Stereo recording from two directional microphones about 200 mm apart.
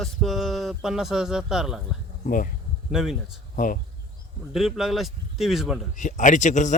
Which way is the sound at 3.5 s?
40° left (ahead or behind).